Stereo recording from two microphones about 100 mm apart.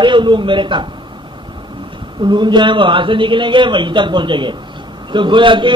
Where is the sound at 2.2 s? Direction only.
50° right (ahead or behind).